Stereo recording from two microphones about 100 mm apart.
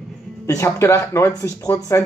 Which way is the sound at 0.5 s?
30° left (ahead or behind).